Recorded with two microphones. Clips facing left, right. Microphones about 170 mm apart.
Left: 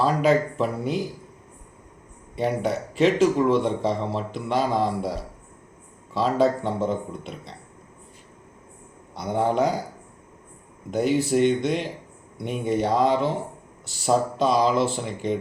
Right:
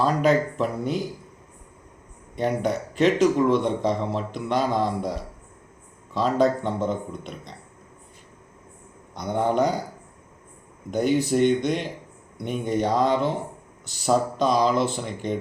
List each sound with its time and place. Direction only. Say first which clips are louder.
0.0 s a man's voice: even; 5° left (ahead or behind)
2.3 s a man's voice: even; 5° left (ahead or behind)
6.1 s a man's voice: even; centre (ahead or behind)
9.1 s a man's voice: even; 5° left (ahead or behind)
10.9 s a man's voice: even; 5° left (ahead or behind)